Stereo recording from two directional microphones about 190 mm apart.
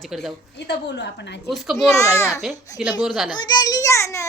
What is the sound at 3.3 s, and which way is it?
Speech, 20° left (ahead or behind).